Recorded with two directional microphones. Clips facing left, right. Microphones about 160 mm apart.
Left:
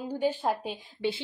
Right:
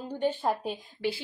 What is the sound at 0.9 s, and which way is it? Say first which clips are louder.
Speech: left 2 dB; 20° left (ahead or behind).